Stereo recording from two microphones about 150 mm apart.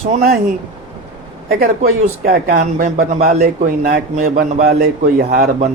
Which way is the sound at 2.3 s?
60° right (ahead or behind).